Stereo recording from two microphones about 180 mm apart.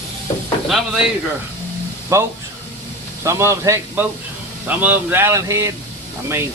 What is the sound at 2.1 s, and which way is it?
Speech, 15° right (ahead or behind).